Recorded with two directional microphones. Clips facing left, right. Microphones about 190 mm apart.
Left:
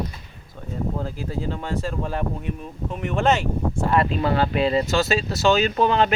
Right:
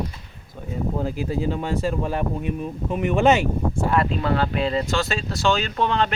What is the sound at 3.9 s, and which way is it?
Speech, 5° left (ahead or behind).